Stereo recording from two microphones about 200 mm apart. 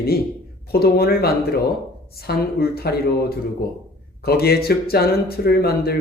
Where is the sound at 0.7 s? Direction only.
50° left (ahead or behind).